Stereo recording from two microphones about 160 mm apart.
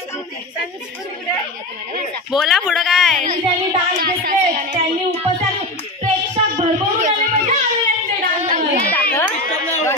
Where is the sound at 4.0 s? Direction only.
70° right (ahead or behind).